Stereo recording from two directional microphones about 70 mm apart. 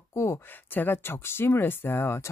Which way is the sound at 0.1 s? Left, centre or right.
Left.